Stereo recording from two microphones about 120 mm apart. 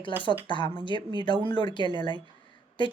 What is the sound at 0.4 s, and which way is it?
A woman's voice, 40° left (ahead or behind).